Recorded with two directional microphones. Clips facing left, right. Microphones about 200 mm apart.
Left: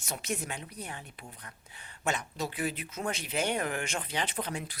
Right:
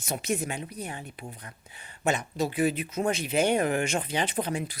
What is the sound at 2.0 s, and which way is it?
Speech, 10° right (ahead or behind).